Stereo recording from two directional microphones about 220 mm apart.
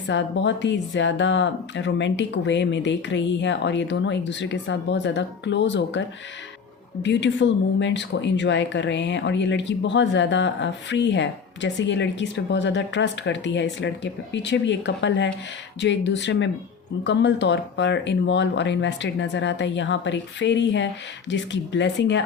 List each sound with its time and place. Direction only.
0.1 s speech: 55° left (ahead or behind)